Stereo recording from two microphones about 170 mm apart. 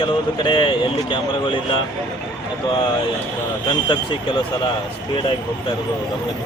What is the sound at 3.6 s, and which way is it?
Speech, 30° left (ahead or behind).